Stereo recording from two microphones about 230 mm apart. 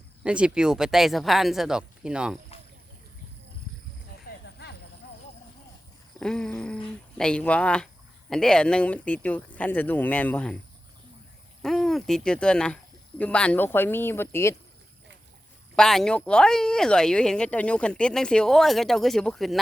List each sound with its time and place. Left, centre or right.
0.2 s speech: centre
4.3 s vehicle: left
6.1 s speech: centre
11.6 s speech: centre
15.7 s speech: centre